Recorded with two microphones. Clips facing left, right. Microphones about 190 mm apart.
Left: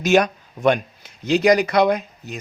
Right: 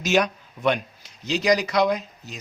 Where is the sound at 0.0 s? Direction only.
50° left (ahead or behind).